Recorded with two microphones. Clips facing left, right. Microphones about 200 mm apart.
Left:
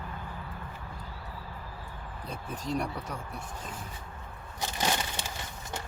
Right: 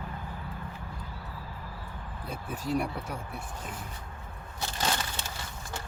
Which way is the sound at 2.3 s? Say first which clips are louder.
Right 2 dB; 10° right (ahead or behind).